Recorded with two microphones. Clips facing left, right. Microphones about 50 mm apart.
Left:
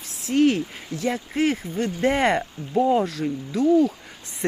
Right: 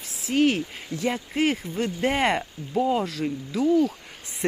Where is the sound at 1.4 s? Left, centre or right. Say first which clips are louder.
Left 1 dB; centre.